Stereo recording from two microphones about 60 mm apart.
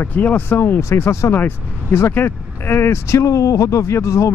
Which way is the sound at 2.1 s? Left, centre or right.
Left.